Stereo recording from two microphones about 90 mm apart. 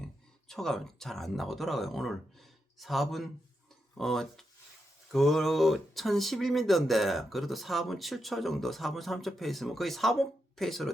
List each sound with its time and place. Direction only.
0.4 s speech: 5° left (ahead or behind)